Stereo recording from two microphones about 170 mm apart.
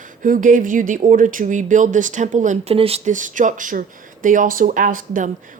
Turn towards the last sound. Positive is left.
turn(degrees=-50)  # may be behind; listen again after turning